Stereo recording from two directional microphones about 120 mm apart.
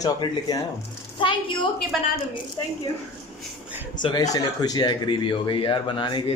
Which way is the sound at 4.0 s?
35° left (ahead or behind).